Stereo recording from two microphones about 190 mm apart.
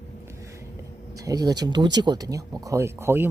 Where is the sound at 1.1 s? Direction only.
20° right (ahead or behind).